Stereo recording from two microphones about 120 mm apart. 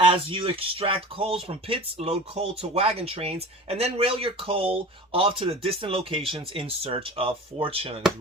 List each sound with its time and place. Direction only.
0.0 s speech: 45° right (ahead or behind)